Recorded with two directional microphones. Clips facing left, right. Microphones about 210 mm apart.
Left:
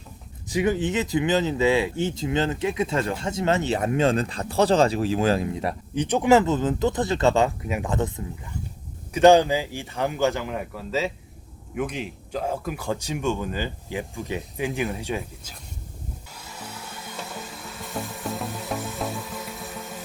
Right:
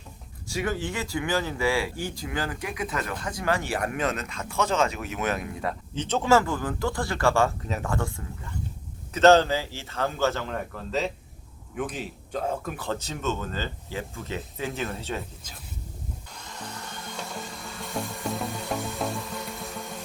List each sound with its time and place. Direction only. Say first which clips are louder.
0.4 s speech: left 6 dB; 20° left (ahead or behind)
16.3 s music: even; 5° left (ahead or behind)